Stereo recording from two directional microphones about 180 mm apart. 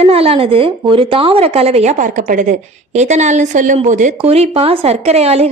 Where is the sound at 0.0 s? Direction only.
35° right (ahead or behind).